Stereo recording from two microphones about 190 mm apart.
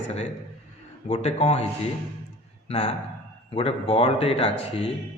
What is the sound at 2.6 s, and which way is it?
A man's voice, 35° left (ahead or behind).